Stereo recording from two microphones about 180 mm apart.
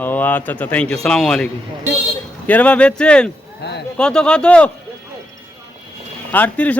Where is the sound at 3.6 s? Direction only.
65° left (ahead or behind).